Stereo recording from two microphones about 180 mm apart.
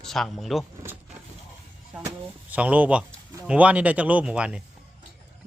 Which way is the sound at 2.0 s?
10° right (ahead or behind).